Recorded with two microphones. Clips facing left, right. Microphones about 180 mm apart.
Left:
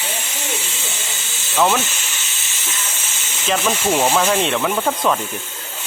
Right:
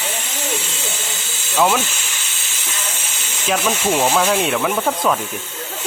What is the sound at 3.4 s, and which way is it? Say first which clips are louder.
Speech: even; 5° right (ahead or behind).